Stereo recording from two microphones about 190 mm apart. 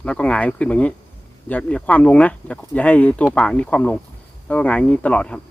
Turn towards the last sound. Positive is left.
turn(degrees=5)  # may be behind; listen again after turning